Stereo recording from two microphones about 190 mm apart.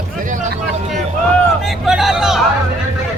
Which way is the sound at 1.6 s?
Centre (ahead or behind).